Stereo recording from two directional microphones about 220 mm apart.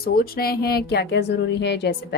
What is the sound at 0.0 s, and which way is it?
A woman's voice, 45° left (ahead or behind).